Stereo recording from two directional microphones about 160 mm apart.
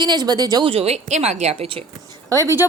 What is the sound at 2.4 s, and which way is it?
Speech, 15° right (ahead or behind).